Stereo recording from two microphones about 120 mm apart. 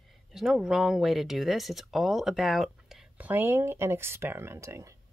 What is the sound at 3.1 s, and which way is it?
Speech, 15° right (ahead or behind).